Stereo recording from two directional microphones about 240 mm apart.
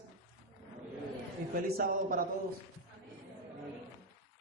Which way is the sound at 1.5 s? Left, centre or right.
Right.